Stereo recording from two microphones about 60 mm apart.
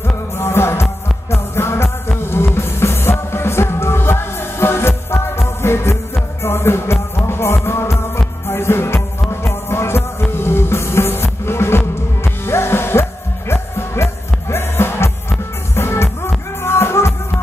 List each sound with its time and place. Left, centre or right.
0.4 s music: left